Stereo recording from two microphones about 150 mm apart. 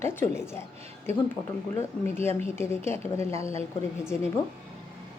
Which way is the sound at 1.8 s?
15° left (ahead or behind).